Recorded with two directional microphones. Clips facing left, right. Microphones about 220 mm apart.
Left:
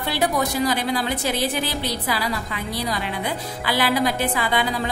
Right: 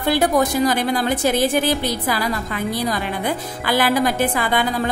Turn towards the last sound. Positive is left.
turn(degrees=-50)  # may be behind; listen again after turning